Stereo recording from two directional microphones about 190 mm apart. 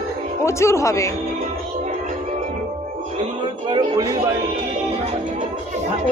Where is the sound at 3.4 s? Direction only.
25° right (ahead or behind).